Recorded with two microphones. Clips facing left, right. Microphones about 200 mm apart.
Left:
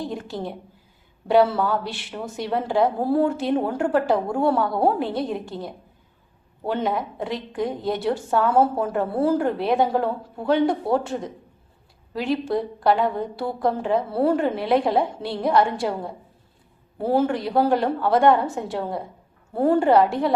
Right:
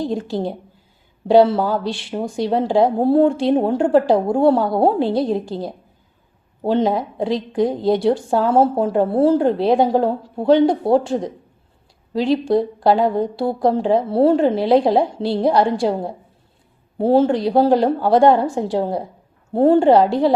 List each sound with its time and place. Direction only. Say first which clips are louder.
0.1 s a woman's voice: right 8 dB; 30° right (ahead or behind)